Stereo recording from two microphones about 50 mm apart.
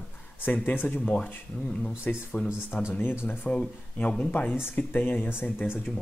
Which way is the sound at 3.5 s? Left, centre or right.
Left.